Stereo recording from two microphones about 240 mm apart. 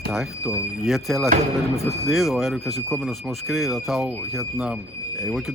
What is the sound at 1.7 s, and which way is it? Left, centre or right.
Speech, centre.